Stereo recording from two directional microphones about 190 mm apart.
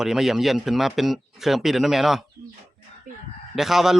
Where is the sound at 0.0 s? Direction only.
Centre (ahead or behind).